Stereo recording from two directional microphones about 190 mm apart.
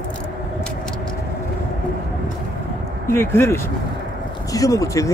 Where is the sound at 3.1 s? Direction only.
15° left (ahead or behind).